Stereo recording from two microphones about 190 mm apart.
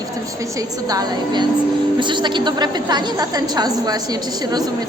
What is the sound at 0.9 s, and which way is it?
A woman's voice, 20° right (ahead or behind).